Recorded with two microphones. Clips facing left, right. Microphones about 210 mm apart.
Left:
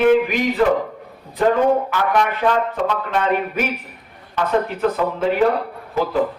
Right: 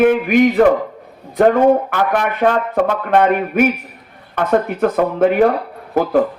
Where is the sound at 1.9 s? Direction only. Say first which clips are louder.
Right 2 dB; 55° right (ahead or behind).